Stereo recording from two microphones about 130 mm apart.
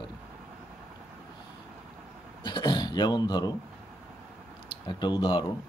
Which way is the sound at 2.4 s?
35° left (ahead or behind).